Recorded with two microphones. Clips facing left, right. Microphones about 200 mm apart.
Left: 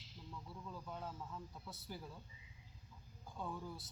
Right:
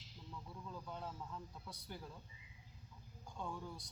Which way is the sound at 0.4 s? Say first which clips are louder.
Right 1 dB; 5° left (ahead or behind).